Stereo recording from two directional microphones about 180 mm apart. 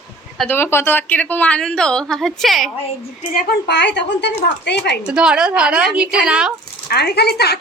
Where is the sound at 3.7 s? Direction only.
75° left (ahead or behind).